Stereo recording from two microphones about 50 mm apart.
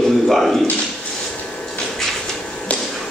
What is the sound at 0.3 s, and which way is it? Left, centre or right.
Speech, centre.